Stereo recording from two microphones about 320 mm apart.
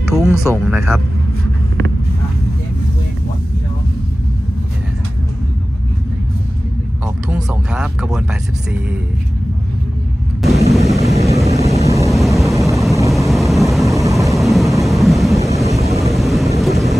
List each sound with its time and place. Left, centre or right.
0.1 s speech: centre
7.2 s speech: centre
10.8 s vehicle: centre